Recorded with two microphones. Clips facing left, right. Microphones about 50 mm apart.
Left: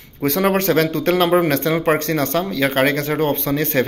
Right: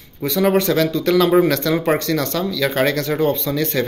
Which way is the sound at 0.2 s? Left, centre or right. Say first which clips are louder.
Right 1 dB; left.